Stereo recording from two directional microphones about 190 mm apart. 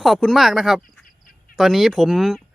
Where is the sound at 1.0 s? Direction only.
50° left (ahead or behind).